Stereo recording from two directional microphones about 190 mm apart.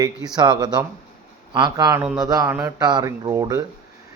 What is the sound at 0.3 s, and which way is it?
Speech, 20° right (ahead or behind).